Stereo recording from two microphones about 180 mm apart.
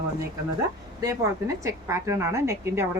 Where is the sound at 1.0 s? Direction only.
15° right (ahead or behind).